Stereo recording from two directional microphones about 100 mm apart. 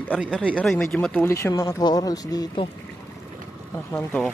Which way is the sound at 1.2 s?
30° left (ahead or behind).